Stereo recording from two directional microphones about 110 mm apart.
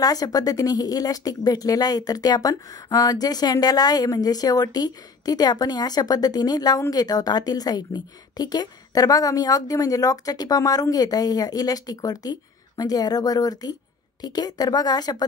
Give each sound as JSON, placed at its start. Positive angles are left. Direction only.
{"t": 0.0, "sound": "a woman's voice", "side_deg": 35}